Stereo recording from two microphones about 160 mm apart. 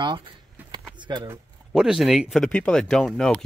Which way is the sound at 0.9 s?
30° right (ahead or behind).